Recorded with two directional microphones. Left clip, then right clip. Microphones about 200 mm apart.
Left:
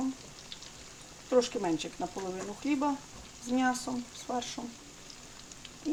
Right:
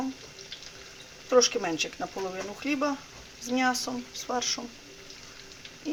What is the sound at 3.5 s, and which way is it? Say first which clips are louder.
Speech: right 3 dB; centre (ahead or behind).